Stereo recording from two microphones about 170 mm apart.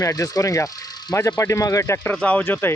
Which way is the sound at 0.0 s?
20° left (ahead or behind).